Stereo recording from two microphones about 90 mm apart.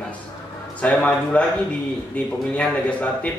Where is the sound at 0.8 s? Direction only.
15° left (ahead or behind).